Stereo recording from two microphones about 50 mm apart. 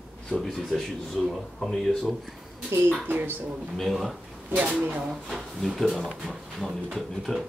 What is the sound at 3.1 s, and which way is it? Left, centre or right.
Speech, right.